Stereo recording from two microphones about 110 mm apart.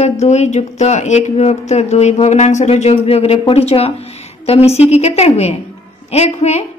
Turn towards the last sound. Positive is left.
turn(degrees=80)